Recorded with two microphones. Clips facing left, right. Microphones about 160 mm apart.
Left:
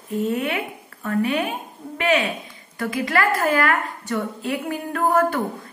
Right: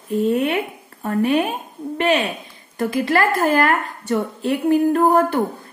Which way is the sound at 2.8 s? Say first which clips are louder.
Right 4 dB; 25° right (ahead or behind).